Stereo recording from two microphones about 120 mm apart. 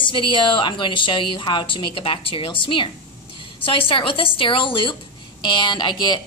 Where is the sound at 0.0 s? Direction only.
45° left (ahead or behind).